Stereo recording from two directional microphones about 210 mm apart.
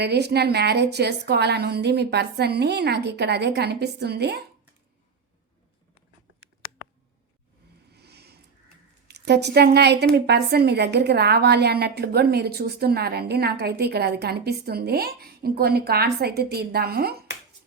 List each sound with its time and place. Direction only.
0.0 s a woman's voice: 50° right (ahead or behind)
7.9 s a sound: 50° right (ahead or behind)
9.0 s a woman's voice: 50° right (ahead or behind)